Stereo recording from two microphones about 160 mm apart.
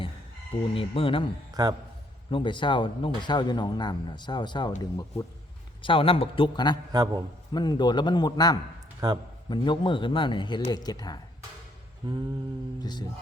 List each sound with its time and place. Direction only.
0.7 s speech: 35° left (ahead or behind)
1.6 s a man's voice: 25° right (ahead or behind)
2.3 s speech: 30° left (ahead or behind)
6.9 s a man's voice: 25° right (ahead or behind)
7.5 s speech: 25° left (ahead or behind)
9.0 s a man's voice: 25° right (ahead or behind)
9.5 s speech: 30° left (ahead or behind)
12.0 s a man's voice: 30° right (ahead or behind)
12.8 s speech: 25° left (ahead or behind)